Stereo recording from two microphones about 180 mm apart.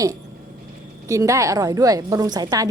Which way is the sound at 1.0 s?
15° right (ahead or behind).